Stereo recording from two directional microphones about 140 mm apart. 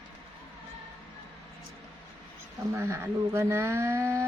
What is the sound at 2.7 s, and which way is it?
A woman's voice, 20° right (ahead or behind).